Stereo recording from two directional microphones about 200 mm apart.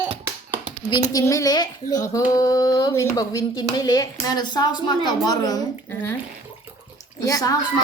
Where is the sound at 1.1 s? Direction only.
15° left (ahead or behind).